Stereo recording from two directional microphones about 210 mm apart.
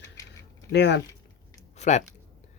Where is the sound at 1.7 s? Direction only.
35° left (ahead or behind).